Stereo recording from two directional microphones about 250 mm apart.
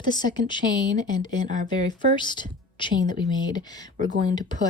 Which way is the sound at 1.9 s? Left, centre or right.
Centre.